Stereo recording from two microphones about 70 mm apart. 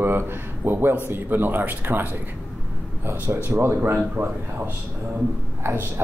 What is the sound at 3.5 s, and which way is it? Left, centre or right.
Speech, right.